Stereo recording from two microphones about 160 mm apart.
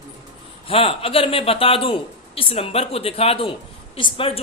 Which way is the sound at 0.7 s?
35° left (ahead or behind).